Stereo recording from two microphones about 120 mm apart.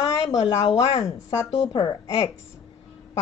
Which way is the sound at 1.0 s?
25° left (ahead or behind).